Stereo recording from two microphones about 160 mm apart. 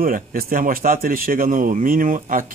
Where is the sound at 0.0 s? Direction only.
65° right (ahead or behind).